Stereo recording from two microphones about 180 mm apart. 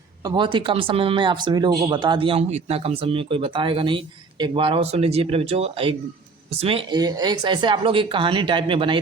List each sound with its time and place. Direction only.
0.3 s speech: 25° right (ahead or behind)